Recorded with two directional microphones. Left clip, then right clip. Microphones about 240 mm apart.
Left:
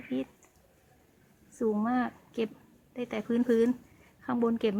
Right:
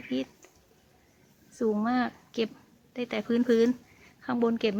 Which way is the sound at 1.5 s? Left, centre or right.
Centre.